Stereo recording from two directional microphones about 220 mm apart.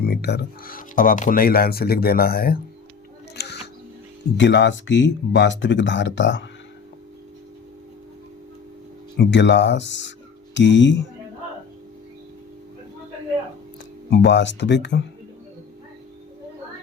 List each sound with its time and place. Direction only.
0.0 s speech: 45° left (ahead or behind)
3.3 s a sound: 50° left (ahead or behind)
4.4 s speech: 55° left (ahead or behind)
9.1 s speech: 55° left (ahead or behind)
14.1 s speech: 55° left (ahead or behind)